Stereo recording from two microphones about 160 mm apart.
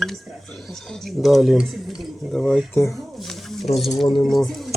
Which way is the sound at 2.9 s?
Centre (ahead or behind).